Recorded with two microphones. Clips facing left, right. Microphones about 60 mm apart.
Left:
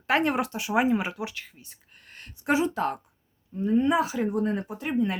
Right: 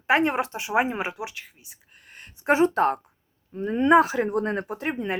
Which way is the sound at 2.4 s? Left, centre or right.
Right.